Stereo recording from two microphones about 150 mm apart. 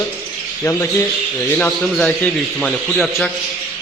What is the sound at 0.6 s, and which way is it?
A man's voice, 15° left (ahead or behind).